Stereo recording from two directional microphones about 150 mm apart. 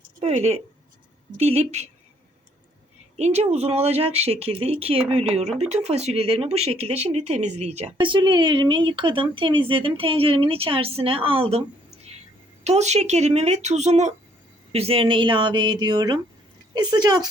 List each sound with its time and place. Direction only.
0.2 s speech: 45° right (ahead or behind)
3.2 s speech: 45° right (ahead or behind)
7.9 s speech: 35° right (ahead or behind)
12.6 s speech: 50° right (ahead or behind); by 17.2 s 30° right (ahead or behind)